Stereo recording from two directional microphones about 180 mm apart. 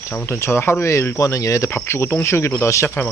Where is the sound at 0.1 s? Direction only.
15° left (ahead or behind).